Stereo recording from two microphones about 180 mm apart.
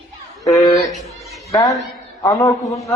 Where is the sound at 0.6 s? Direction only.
Centre (ahead or behind).